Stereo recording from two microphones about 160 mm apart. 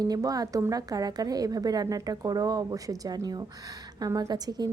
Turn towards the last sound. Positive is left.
turn(degrees=-25)  # may be behind; listen again after turning